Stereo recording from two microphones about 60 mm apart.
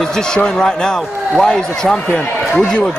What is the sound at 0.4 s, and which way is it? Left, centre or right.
Speech, centre.